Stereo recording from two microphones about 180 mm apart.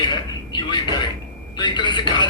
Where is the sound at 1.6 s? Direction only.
25° left (ahead or behind).